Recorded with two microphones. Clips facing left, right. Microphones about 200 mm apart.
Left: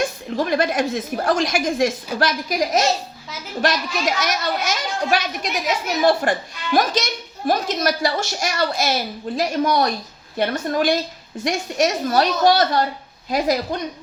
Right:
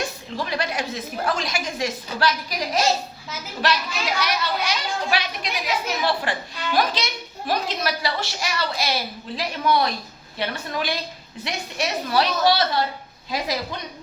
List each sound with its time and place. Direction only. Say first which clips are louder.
0.0 s a woman's voice: left 6 dB; 50° left (ahead or behind)